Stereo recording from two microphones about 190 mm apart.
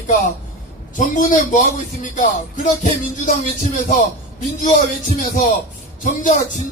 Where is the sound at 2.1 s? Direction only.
40° left (ahead or behind).